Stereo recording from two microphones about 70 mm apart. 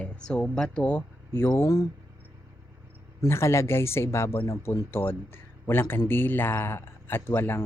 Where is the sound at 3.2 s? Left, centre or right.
Left.